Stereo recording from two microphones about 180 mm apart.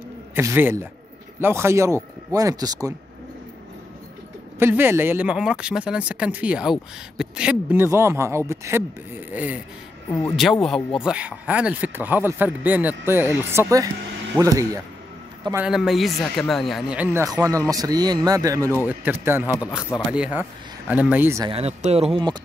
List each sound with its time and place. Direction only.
0.4 s speech: 15° right (ahead or behind)
4.6 s speech: 10° right (ahead or behind)
10.2 s a man's voice: centre (ahead or behind); by 14.8 s 20° right (ahead or behind)
15.6 s a man's voice: 5° right (ahead or behind)
21.5 s speech: 35° right (ahead or behind)